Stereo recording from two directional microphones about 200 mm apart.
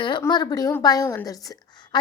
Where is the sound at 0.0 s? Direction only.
20° left (ahead or behind).